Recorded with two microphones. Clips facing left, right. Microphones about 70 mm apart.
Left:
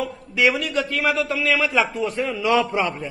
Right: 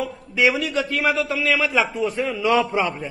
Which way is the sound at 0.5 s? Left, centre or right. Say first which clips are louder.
Even; centre.